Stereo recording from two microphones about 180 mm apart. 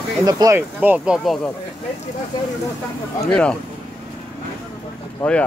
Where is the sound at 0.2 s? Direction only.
20° right (ahead or behind).